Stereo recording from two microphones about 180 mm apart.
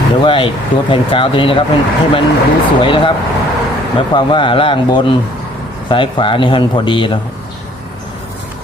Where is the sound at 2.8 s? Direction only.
30° left (ahead or behind).